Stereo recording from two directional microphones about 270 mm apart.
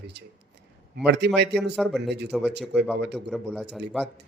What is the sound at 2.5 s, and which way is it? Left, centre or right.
Speech, right.